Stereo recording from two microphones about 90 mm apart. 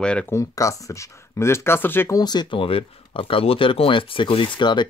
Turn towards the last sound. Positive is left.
turn(degrees=60)  # may be behind; listen again after turning